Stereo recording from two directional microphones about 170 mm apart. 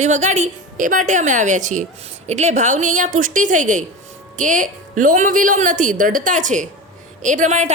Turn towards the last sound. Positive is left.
turn(degrees=-45)  # may be behind; listen again after turning